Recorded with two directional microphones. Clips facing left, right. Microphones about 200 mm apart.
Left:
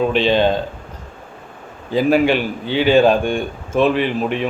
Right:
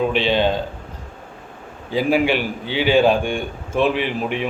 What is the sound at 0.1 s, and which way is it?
Speech, 45° left (ahead or behind).